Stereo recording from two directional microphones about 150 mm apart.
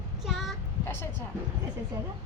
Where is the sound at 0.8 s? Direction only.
15° left (ahead or behind).